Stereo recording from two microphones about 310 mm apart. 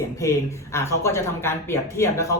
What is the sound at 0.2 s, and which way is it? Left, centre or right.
Speech, centre.